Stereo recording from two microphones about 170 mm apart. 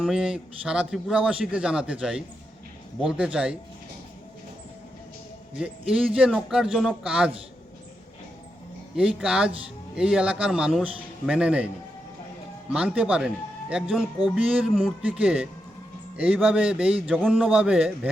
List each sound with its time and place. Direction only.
0.0 s a man's voice: 5° right (ahead or behind)
5.5 s a man's voice: 5° right (ahead or behind)
9.0 s a man's voice: 5° right (ahead or behind)
12.7 s a man's voice: 5° right (ahead or behind)